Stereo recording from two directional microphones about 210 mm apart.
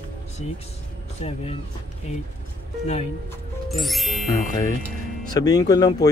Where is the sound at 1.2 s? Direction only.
30° left (ahead or behind).